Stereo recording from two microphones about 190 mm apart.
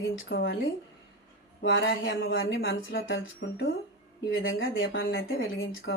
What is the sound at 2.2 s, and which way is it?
Speech, 70° left (ahead or behind).